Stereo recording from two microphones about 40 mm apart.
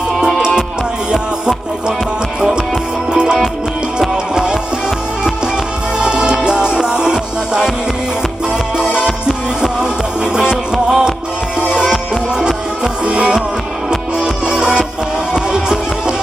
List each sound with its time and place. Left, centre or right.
3.1 s music: right
6.0 s music: right
8.9 s music: right